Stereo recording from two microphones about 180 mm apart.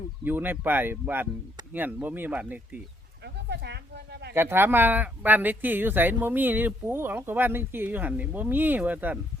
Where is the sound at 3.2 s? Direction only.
65° right (ahead or behind).